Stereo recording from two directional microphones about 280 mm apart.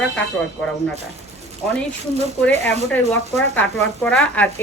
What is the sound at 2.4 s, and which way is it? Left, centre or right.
Speech, centre.